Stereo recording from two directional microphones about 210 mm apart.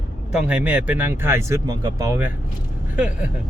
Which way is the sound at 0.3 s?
5° right (ahead or behind).